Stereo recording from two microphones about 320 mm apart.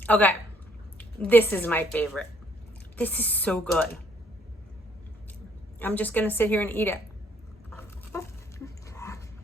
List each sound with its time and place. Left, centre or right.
0.0 s a woman's voice: centre
5.8 s a woman's voice: centre
7.8 s dog: centre